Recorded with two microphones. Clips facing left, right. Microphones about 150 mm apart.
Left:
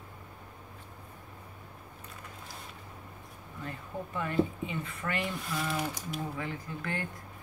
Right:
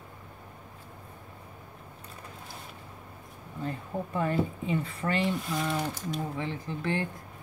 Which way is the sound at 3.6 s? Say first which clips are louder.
Right 5 dB; 35° right (ahead or behind).